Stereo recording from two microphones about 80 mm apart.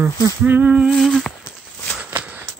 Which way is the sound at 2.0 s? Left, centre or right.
Centre.